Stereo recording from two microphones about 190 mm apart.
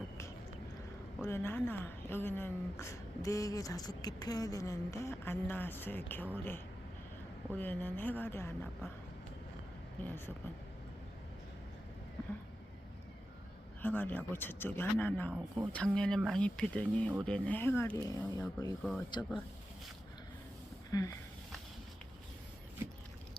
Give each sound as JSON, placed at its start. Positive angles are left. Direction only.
{"t": 1.2, "sound": "speech", "side_deg": 15}
{"t": 10.0, "sound": "speech", "side_deg": 10}
{"t": 13.8, "sound": "speech", "side_deg": 10}
{"t": 20.9, "sound": "speech", "side_deg": 15}